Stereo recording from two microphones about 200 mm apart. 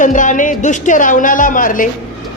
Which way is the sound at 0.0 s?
40° left (ahead or behind).